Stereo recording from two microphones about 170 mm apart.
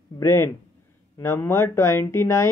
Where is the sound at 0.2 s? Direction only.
15° left (ahead or behind).